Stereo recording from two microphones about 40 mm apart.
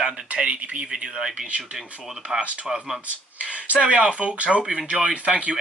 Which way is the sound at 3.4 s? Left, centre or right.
Right.